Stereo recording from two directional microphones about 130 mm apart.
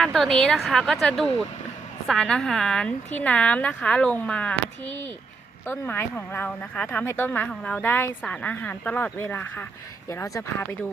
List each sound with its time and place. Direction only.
0.0 s a woman's voice: 5° left (ahead or behind)
10.1 s speech: 25° left (ahead or behind)